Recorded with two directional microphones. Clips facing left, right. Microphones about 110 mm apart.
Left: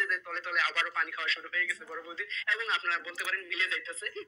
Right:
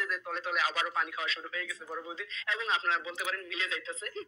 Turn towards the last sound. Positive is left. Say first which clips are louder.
# right 1 dB
turn(degrees=-20)  # may be behind; listen again after turning